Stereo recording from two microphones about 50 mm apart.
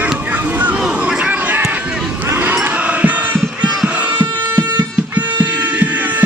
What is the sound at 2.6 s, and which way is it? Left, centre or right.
Music, right.